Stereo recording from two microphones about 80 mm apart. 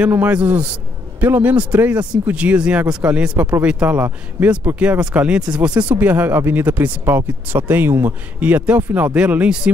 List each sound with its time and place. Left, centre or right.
0.0 s speech: centre